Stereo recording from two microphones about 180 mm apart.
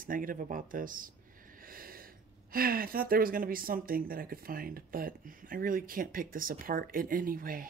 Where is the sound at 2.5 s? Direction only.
55° right (ahead or behind).